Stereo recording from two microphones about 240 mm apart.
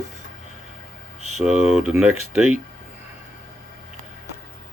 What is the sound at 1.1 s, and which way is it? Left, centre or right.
Speech, left.